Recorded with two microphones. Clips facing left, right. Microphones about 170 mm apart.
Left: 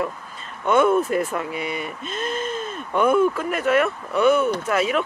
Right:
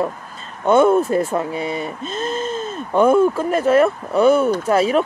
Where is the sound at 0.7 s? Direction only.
30° right (ahead or behind).